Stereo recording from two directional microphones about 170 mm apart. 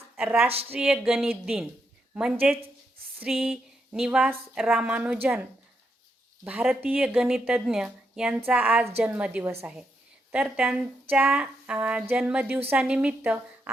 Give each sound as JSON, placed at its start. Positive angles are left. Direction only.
{"t": 0.2, "sound": "speech", "side_deg": -5}
{"t": 0.4, "sound": "speech", "side_deg": -35}
{"t": 0.7, "sound": "speech", "side_deg": -5}
{"t": 8.4, "sound": "a sound", "side_deg": -10}
{"t": 10.3, "sound": "speech", "side_deg": -5}
{"t": 11.1, "sound": "a sound", "side_deg": -10}